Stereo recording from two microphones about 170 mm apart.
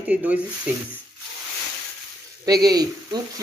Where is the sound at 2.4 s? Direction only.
20° right (ahead or behind).